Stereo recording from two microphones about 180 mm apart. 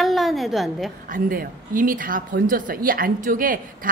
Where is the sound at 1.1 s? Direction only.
50° right (ahead or behind).